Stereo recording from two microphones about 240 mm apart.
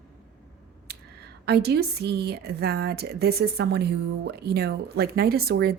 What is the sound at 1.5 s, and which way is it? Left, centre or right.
A woman's voice, right.